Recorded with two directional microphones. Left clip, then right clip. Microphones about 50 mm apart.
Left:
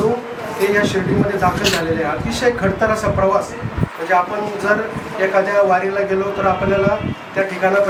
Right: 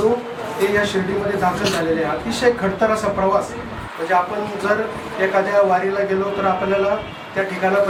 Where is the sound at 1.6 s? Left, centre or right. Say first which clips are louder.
Left 3 dB; left.